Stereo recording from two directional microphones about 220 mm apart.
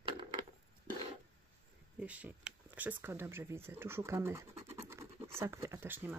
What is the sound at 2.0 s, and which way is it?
Speech, 5° right (ahead or behind).